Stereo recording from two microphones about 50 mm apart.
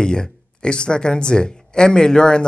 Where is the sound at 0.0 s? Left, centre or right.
Centre.